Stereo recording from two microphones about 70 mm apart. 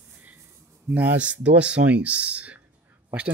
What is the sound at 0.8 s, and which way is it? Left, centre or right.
A man's voice, right.